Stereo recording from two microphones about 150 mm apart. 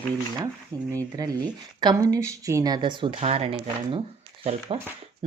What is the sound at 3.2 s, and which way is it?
Speech, 45° right (ahead or behind).